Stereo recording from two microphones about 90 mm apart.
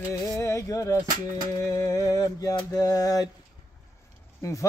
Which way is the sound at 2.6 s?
45° left (ahead or behind).